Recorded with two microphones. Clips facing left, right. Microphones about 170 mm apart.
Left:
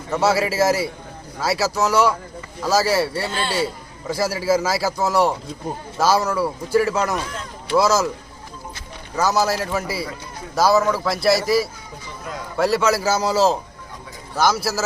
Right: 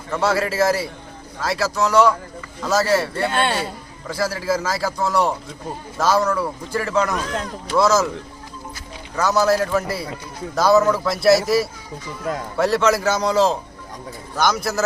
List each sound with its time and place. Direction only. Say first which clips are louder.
0.1 s a man's voice: left 1 dB; 5° left (ahead or behind)
3.2 s speech: right 5 dB; 60° right (ahead or behind)
4.1 s a man's voice: left 2 dB; 10° left (ahead or behind)
9.2 s speech: right 2 dB; 5° left (ahead or behind)